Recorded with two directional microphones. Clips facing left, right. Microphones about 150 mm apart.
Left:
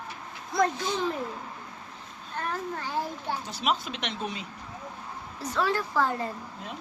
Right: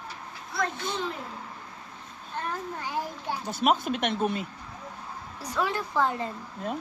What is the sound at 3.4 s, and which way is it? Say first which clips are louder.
Speech: right 7 dB; 50° right (ahead or behind).